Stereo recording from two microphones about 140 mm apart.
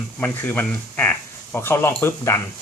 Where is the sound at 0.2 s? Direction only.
10° left (ahead or behind).